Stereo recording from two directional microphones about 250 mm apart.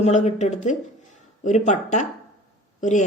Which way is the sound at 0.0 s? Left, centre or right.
Left.